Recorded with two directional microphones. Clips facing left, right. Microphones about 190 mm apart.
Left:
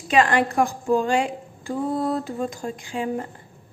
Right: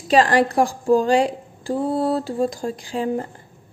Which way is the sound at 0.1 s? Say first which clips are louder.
Right 3 dB; 35° right (ahead or behind).